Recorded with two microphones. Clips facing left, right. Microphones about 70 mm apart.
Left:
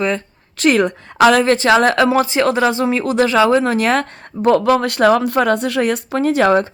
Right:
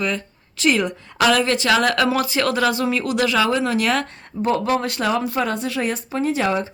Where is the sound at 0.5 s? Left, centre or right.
Left.